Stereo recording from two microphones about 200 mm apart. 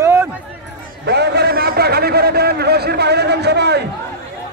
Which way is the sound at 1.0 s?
55° right (ahead or behind).